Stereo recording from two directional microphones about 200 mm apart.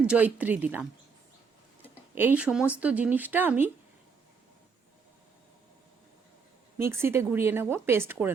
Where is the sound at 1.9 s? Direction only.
10° right (ahead or behind).